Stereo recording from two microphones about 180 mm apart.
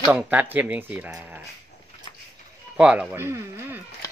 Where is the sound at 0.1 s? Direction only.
10° right (ahead or behind).